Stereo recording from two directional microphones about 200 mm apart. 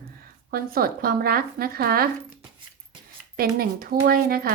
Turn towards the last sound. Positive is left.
turn(degrees=-50)  # may be behind; listen again after turning